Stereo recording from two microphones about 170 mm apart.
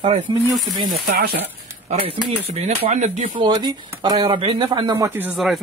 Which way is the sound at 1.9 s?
35° right (ahead or behind).